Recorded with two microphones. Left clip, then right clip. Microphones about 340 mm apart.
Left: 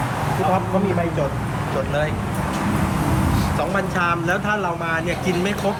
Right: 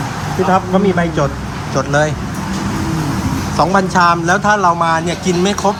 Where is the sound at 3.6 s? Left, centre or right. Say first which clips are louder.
Right 12 dB; centre.